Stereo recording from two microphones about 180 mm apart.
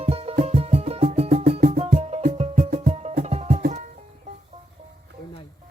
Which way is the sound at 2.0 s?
35° right (ahead or behind).